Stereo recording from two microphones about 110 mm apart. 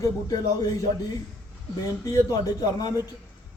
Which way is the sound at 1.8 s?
35° left (ahead or behind).